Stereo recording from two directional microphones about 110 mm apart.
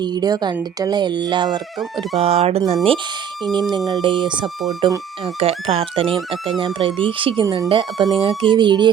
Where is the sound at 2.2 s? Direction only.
65° right (ahead or behind); by 3.1 s 50° right (ahead or behind).